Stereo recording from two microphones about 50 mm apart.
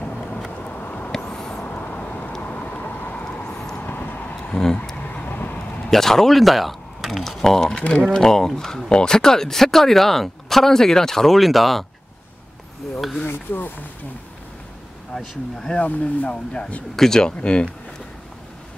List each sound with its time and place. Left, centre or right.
0.0 s vehicle: left
0.7 s a sound: left
1.1 s vehicle: centre
1.7 s vehicle: left
3.5 s vehicle: centre
3.8 s vehicle: left
4.5 s speech: centre
5.0 s vehicle: left
5.9 s speech: centre
13.3 s speech: left
15.1 s speech: centre
15.8 s speech: left
16.9 s speech: centre